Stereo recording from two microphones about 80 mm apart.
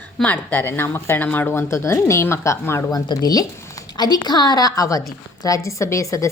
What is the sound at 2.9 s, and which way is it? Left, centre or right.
A woman's voice, left.